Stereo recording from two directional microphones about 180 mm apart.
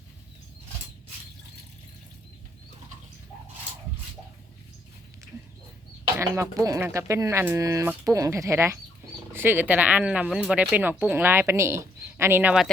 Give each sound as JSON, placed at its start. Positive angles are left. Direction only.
{"t": 6.1, "sound": "speech", "side_deg": -15}